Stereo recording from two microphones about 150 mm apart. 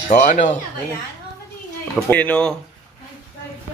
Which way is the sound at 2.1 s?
10° left (ahead or behind).